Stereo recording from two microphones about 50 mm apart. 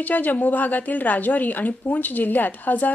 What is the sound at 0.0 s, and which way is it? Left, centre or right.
A woman's voice, left.